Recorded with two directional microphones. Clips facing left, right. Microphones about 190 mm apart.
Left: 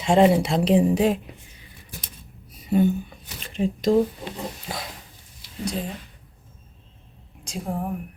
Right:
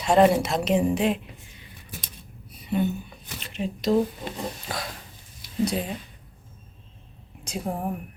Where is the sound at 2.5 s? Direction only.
45° left (ahead or behind).